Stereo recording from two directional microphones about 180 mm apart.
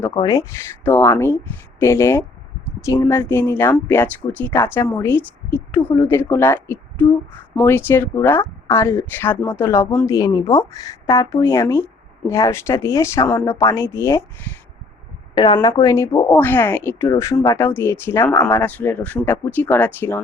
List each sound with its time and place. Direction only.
0.1 s speech: 20° left (ahead or behind)
15.4 s speech: 25° left (ahead or behind)